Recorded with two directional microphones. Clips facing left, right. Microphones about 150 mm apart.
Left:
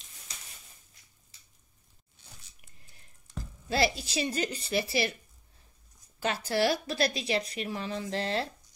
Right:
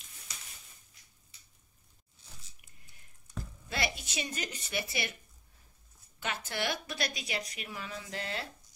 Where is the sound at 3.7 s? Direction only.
30° left (ahead or behind).